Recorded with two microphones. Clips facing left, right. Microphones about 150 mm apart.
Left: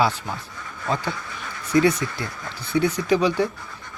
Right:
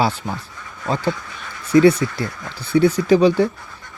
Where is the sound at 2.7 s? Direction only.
30° right (ahead or behind).